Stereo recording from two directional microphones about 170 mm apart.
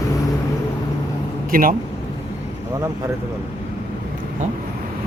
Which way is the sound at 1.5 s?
55° right (ahead or behind).